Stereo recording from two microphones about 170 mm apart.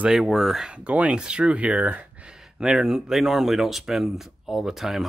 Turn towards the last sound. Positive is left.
turn(degrees=0)  # may be behind; listen again after turning